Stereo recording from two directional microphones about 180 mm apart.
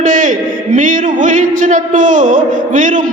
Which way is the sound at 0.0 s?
45° right (ahead or behind).